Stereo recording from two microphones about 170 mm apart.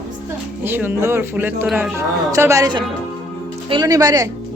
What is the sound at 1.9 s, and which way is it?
A woman's voice, 15° right (ahead or behind).